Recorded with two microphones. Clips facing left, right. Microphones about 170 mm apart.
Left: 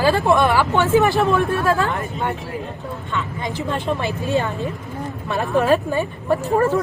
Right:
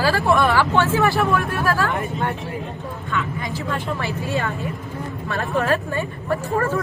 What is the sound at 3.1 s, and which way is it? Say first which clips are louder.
Speech: even; 20° left (ahead or behind).